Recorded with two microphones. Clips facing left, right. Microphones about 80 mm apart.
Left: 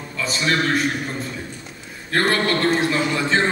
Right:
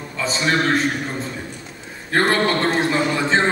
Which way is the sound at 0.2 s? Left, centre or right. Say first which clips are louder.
Right 1 dB; right.